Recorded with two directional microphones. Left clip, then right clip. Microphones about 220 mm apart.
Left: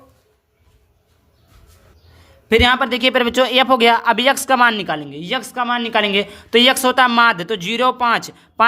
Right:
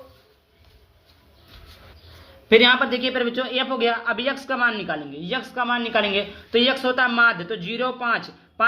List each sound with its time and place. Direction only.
2.5 s speech: 30° left (ahead or behind)